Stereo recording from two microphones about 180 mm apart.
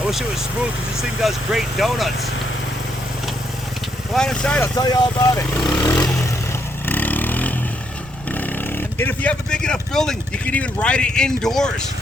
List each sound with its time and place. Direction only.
0.1 s speech: centre (ahead or behind)
4.1 s speech: 5° left (ahead or behind)
4.7 s speech: 20° left (ahead or behind)
5.9 s vehicle: 5° left (ahead or behind)
8.3 s speech: 10° left (ahead or behind)